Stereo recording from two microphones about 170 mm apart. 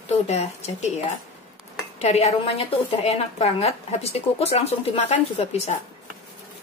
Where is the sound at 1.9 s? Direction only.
40° left (ahead or behind).